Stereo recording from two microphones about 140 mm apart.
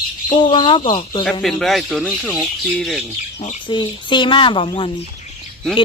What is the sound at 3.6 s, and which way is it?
Speech, 35° left (ahead or behind).